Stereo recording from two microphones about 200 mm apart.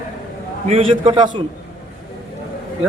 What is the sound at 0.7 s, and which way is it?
Speech, 25° right (ahead or behind).